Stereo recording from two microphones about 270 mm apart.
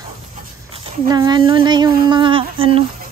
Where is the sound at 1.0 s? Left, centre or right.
Centre.